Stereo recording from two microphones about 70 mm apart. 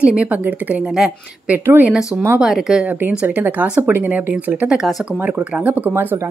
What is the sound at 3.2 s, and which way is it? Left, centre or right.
Speech, right.